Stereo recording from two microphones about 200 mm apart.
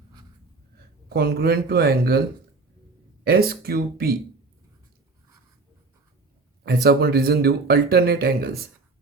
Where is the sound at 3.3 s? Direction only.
50° right (ahead or behind).